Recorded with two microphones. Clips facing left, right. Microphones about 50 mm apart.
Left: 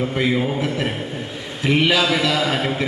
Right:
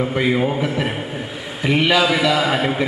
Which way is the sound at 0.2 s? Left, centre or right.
Centre.